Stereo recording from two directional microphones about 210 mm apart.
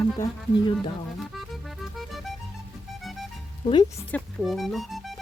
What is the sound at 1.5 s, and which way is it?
Music, centre (ahead or behind).